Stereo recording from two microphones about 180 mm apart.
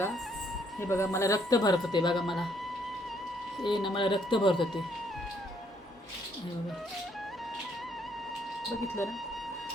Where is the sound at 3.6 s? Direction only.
25° left (ahead or behind).